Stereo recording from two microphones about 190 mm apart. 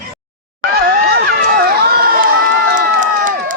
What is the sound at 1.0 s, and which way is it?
Run, 55° right (ahead or behind).